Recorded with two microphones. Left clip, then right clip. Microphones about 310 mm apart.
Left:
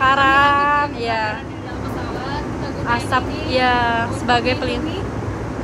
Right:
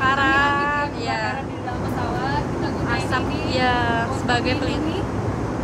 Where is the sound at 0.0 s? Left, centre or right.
Centre.